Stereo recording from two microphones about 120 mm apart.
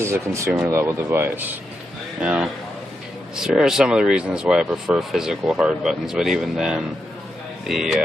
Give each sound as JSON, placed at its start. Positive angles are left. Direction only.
{"t": 0.0, "sound": "speech", "side_deg": -25}